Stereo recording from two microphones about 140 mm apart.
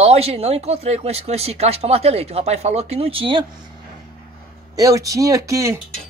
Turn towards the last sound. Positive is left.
turn(degrees=-20)  # may be behind; listen again after turning